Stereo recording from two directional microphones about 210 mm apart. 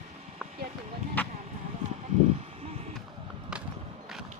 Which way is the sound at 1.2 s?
10° left (ahead or behind).